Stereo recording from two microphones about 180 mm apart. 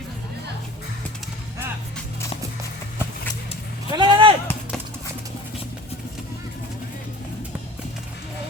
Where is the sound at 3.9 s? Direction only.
25° right (ahead or behind).